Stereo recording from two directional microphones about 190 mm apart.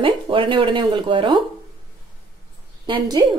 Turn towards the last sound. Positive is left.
turn(degrees=-20)  # may be behind; listen again after turning